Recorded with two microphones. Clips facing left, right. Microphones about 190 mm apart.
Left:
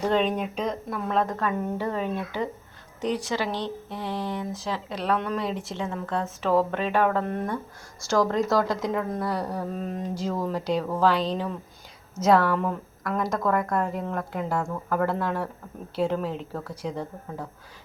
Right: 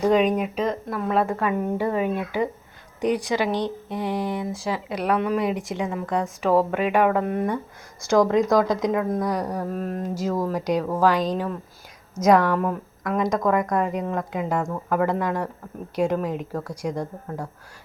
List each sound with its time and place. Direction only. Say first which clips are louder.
0.0 s speech: right 5 dB; 10° right (ahead or behind)